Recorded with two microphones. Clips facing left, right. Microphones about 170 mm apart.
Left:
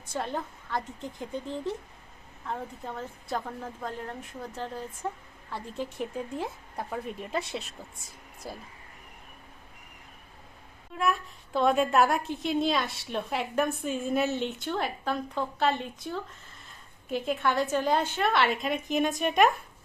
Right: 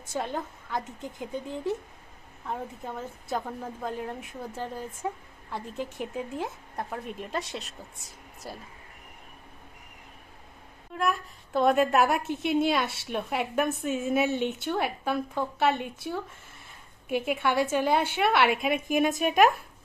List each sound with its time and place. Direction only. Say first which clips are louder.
0.1 s a woman's voice: right 1 dB; centre (ahead or behind)
10.9 s speech: even; centre (ahead or behind)
12.3 s a woman's voice: right 2 dB; 60° right (ahead or behind)
12.5 s speech: right 2 dB; 5° right (ahead or behind)
14.3 s a woman's voice: right 2 dB; 55° right (ahead or behind)
14.6 s a woman's voice: right 2 dB; 10° right (ahead or behind)